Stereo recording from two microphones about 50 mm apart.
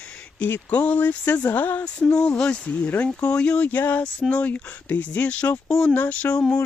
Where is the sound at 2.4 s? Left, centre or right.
Left.